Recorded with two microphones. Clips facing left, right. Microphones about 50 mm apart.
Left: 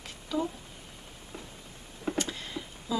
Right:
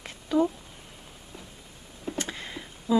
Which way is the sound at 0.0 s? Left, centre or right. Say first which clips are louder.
Right 7 dB; right.